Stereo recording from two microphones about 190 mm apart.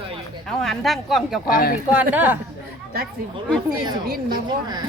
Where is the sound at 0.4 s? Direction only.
Centre (ahead or behind).